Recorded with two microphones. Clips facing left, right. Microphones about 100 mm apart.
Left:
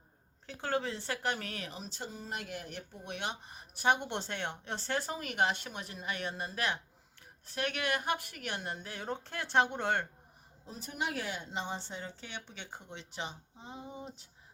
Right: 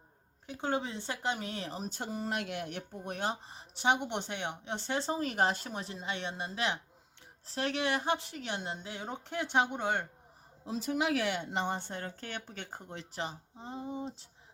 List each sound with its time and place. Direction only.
0.4 s a woman's voice: 20° right (ahead or behind); by 1.9 s 35° right (ahead or behind)
1.9 s speech: 60° right (ahead or behind)
3.0 s a woman's voice: 40° right (ahead or behind); by 10.1 s 15° right (ahead or behind)
10.7 s speech: 90° right; by 14.3 s 30° right (ahead or behind)